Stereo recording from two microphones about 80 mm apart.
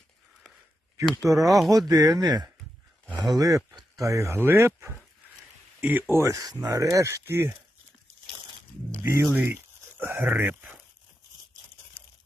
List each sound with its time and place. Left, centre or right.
1.2 s speech: right
1.5 s speech: centre
1.9 s speech: right
9.0 s speech: right
9.3 s speech: right